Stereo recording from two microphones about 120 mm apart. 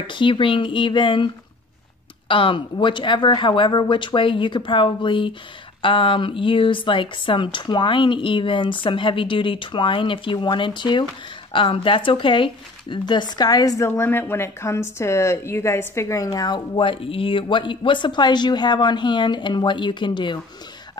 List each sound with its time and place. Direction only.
0.0 s a woman's voice: 45° left (ahead or behind)
13.8 s a woman's voice: 20° left (ahead or behind); by 20.3 s 40° left (ahead or behind)